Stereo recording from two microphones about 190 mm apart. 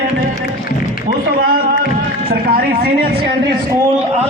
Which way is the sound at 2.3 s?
55° right (ahead or behind).